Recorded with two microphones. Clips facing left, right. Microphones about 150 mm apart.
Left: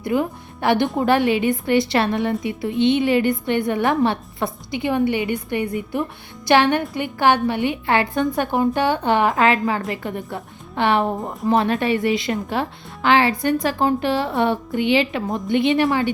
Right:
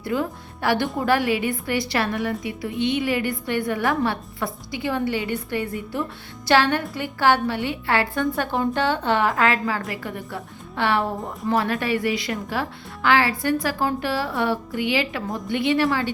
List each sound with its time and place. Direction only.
0.0 s a woman's voice: 20° left (ahead or behind)